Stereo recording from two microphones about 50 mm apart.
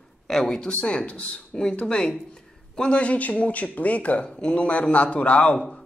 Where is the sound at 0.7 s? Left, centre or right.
Left.